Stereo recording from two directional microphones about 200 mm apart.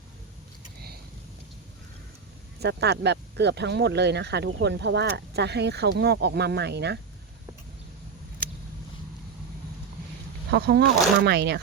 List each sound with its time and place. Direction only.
2.6 s speech: 55° right (ahead or behind)
10.5 s speech: 55° right (ahead or behind)